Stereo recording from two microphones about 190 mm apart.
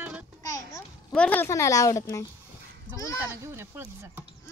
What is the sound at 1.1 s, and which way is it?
A child's voice, 5° left (ahead or behind).